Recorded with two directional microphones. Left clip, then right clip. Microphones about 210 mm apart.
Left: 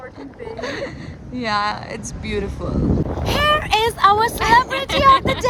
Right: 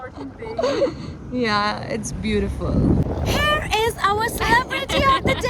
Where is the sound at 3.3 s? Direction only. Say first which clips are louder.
Left 4 dB; centre (ahead or behind).